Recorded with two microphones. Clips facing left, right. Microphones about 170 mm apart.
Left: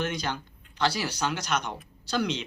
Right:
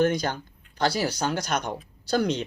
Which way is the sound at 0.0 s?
45° right (ahead or behind).